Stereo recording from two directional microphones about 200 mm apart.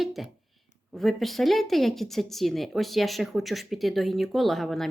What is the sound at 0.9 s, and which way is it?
Speech, centre (ahead or behind).